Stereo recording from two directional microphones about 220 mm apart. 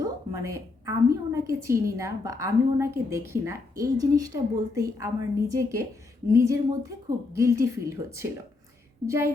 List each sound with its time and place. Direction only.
0.0 s a woman's voice: 15° right (ahead or behind)